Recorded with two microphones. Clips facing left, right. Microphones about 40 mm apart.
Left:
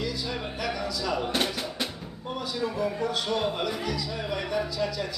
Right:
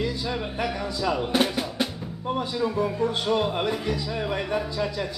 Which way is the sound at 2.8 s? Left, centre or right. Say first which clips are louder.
Right 3 dB; right.